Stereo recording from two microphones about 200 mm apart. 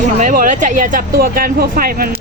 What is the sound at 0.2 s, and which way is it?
Speech, 40° right (ahead or behind).